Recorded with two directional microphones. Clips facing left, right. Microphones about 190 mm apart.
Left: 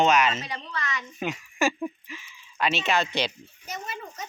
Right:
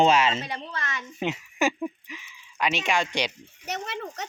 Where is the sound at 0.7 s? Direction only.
45° right (ahead or behind).